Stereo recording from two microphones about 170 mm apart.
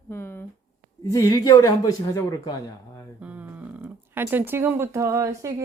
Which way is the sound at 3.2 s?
10° right (ahead or behind).